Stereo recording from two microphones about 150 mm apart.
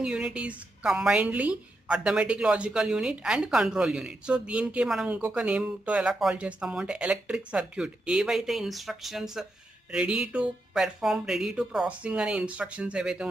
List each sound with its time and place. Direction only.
0.0 s a woman's voice: 5° right (ahead or behind)